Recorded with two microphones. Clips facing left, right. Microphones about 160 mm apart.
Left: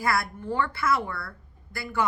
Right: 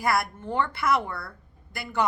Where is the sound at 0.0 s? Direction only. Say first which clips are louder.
Right 1 dB; 20° right (ahead or behind).